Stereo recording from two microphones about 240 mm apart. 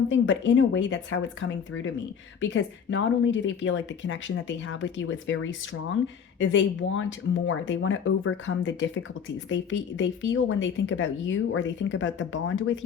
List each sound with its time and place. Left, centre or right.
0.1 s speech: left